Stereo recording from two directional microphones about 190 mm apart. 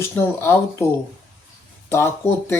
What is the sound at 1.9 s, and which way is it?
Speech, 15° left (ahead or behind).